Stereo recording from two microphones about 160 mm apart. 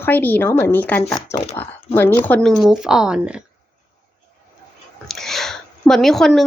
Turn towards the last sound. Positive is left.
turn(degrees=0)  # may be behind; listen again after turning